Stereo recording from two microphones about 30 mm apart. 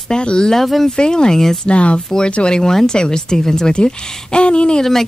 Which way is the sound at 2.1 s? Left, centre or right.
Left.